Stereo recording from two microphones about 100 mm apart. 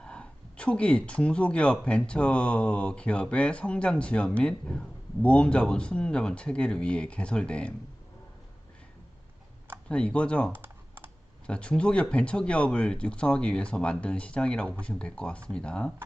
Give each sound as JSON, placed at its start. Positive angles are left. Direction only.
{"t": 0.0, "sound": "speech", "side_deg": 10}
{"t": 9.9, "sound": "speech", "side_deg": 10}
{"t": 10.5, "sound": "computer keyboard", "side_deg": -20}
{"t": 11.4, "sound": "speech", "side_deg": 10}